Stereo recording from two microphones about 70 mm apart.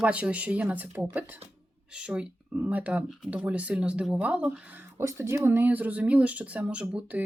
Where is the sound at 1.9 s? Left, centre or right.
Centre.